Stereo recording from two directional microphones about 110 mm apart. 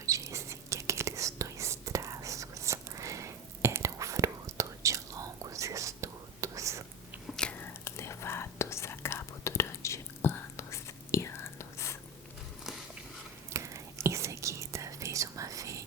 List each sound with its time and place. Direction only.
0.0 s whispering: 30° right (ahead or behind)
7.3 s whispering: 10° left (ahead or behind)
7.6 s whispering: 25° left (ahead or behind)
13.5 s whispering: 25° right (ahead or behind)